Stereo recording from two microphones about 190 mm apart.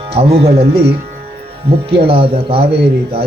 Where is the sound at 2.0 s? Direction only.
30° right (ahead or behind).